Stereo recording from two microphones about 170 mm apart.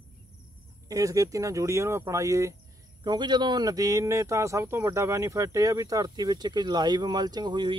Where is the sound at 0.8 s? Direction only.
20° right (ahead or behind).